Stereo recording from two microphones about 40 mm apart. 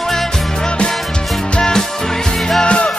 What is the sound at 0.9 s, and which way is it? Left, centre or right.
Music, centre.